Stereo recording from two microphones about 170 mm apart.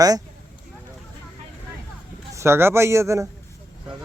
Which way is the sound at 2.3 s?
15° right (ahead or behind).